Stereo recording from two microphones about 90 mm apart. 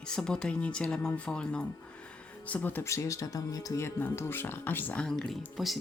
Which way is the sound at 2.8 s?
35° left (ahead or behind).